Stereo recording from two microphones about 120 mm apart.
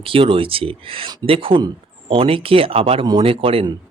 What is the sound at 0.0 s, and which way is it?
A man's voice, 50° right (ahead or behind).